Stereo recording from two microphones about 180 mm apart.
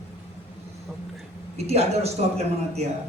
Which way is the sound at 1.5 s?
35° right (ahead or behind).